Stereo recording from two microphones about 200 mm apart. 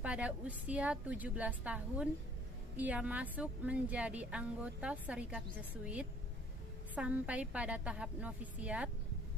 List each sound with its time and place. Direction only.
0.0 s speech: 5° right (ahead or behind)
7.0 s speech: 5° right (ahead or behind)